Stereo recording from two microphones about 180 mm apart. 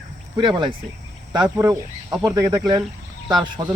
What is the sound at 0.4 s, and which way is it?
A man's voice, 25° right (ahead or behind).